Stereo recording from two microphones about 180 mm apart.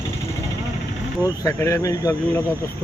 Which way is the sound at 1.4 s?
15° left (ahead or behind).